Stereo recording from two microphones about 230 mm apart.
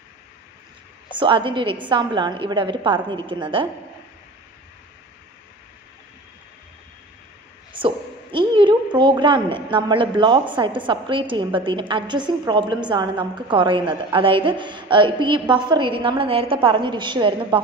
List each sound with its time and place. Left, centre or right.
1.1 s a woman's voice: right
7.8 s a woman's voice: right